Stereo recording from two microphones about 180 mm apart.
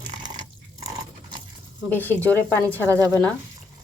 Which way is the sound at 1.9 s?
10° left (ahead or behind).